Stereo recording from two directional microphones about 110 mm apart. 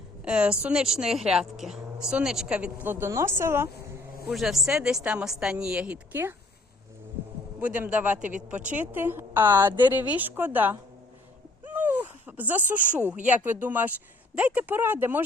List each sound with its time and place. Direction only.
0.3 s speech: 10° right (ahead or behind)
4.3 s speech: centre (ahead or behind)
7.6 s speech: 10° right (ahead or behind)
11.6 s a sound: 15° right (ahead or behind)
13.3 s speech: 15° right (ahead or behind)